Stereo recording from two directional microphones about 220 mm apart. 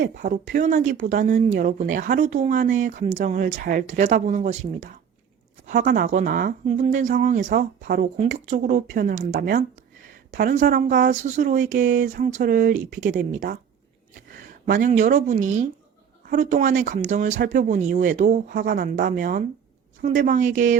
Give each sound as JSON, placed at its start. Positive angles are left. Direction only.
{"t": 0.0, "sound": "speech", "side_deg": -35}